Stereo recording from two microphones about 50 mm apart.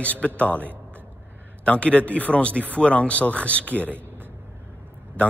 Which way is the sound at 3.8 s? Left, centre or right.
Right.